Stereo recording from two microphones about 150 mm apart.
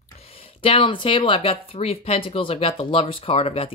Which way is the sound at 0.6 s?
35° left (ahead or behind).